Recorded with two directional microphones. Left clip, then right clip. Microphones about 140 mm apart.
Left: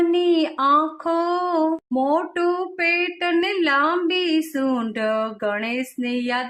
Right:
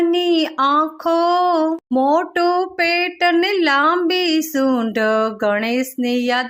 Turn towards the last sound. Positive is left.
turn(degrees=-35)  # may be behind; listen again after turning